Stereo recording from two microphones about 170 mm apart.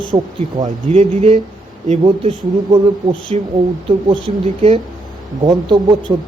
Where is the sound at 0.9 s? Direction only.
35° right (ahead or behind).